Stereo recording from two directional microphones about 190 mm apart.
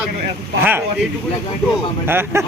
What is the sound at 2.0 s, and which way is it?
Speech, 10° right (ahead or behind).